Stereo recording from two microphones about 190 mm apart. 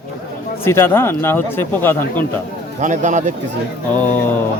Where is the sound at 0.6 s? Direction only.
10° left (ahead or behind).